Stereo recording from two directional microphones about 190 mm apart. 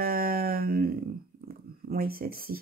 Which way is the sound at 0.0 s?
50° right (ahead or behind).